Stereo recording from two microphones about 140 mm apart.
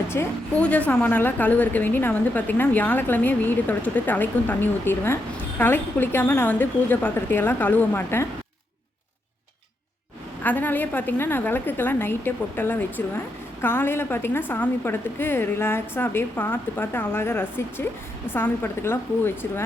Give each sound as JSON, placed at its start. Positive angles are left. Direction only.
{"t": 0.1, "sound": "a woman's voice", "side_deg": 15}
{"t": 10.4, "sound": "a woman's voice", "side_deg": 10}